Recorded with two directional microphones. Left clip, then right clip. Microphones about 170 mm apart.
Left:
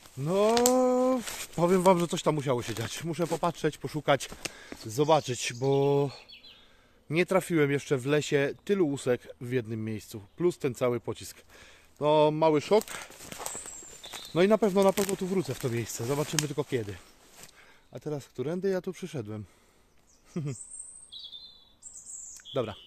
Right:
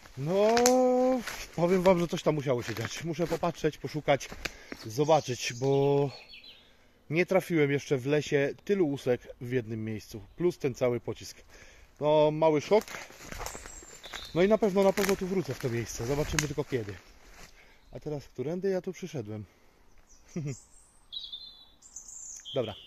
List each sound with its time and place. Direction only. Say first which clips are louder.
0.2 s speech: even; 10° left (ahead or behind)
12.8 s walk: left 1 dB; 5° left (ahead or behind)
14.3 s speech: left 1 dB; 15° left (ahead or behind)
17.9 s speech: left 1 dB; 15° left (ahead or behind)